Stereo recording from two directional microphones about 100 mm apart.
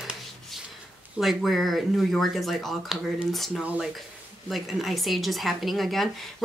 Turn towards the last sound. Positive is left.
turn(degrees=0)  # may be behind; listen again after turning